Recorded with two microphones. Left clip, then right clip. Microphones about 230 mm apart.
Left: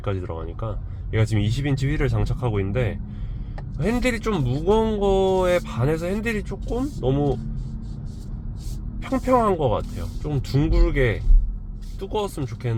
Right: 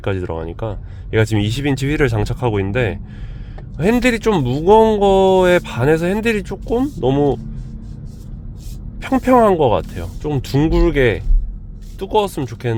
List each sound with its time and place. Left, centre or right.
0.0 s speech: right
9.0 s speech: right